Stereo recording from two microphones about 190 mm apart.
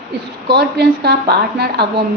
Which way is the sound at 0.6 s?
60° right (ahead or behind).